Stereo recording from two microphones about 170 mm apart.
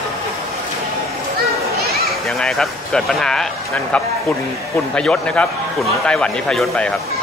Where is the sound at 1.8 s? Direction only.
65° right (ahead or behind).